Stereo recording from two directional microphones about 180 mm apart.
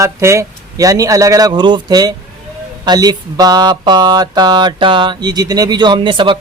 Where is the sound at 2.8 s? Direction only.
20° right (ahead or behind).